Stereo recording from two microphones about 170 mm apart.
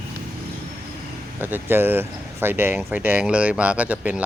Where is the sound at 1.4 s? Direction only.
10° right (ahead or behind).